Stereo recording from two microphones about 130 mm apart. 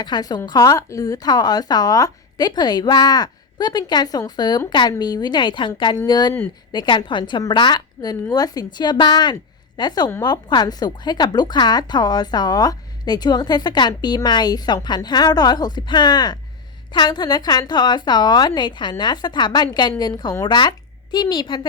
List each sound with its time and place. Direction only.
0.0 s a woman's voice: 30° left (ahead or behind)